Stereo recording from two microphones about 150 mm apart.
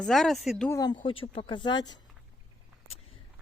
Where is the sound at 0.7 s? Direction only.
25° left (ahead or behind).